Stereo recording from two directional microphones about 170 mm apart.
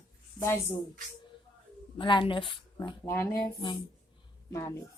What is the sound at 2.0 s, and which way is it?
Speech, 30° left (ahead or behind).